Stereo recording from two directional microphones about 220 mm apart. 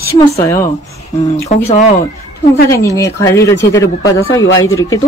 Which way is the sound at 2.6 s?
15° left (ahead or behind).